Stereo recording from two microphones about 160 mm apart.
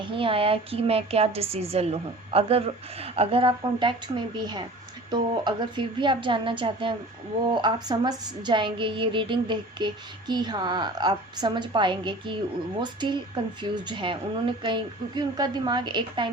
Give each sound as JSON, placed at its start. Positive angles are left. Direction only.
{"t": 0.0, "sound": "a woman's voice", "side_deg": -35}